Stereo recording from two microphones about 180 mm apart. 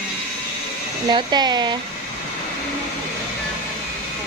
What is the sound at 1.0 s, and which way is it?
Speech, 25° right (ahead or behind).